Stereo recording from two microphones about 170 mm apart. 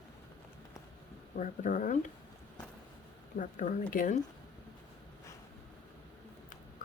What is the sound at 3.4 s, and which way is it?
Speech, 50° left (ahead or behind).